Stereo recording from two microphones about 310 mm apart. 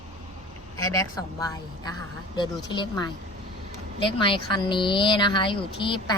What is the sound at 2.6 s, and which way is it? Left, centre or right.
A woman's voice, centre.